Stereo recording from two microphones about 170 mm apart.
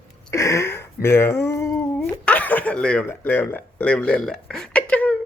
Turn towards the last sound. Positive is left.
turn(degrees=10)  # may be behind; listen again after turning